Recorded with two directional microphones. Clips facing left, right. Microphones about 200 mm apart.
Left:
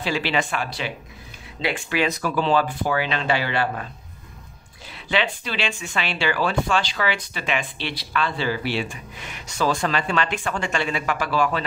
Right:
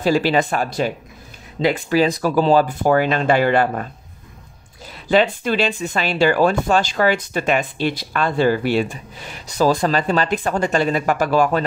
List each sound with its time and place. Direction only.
0.0 s speech: 40° right (ahead or behind)
4.9 s speech: 45° right (ahead or behind)